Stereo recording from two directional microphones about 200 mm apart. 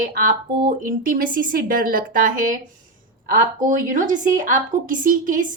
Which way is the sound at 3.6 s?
40° right (ahead or behind).